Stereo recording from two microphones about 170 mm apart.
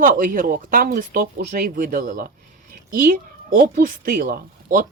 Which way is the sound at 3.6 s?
60° right (ahead or behind).